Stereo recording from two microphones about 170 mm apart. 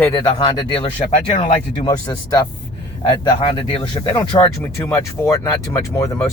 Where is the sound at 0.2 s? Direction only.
25° left (ahead or behind).